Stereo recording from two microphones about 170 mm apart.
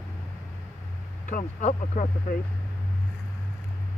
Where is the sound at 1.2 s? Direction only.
45° left (ahead or behind).